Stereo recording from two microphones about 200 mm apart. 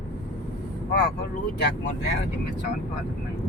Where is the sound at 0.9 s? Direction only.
55° left (ahead or behind).